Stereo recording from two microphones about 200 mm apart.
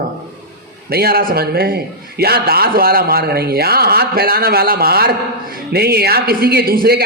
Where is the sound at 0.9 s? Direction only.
50° right (ahead or behind).